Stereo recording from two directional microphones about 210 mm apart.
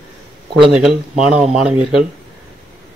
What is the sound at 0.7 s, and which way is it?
Speech, 5° right (ahead or behind).